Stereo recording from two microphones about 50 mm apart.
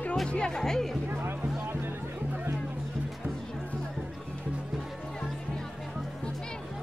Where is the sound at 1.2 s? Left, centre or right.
Right.